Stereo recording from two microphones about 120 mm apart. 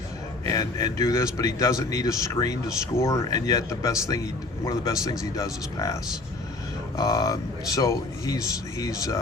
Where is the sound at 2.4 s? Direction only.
45° left (ahead or behind).